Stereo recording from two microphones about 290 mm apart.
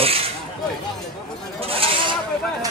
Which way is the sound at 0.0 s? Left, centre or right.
Centre.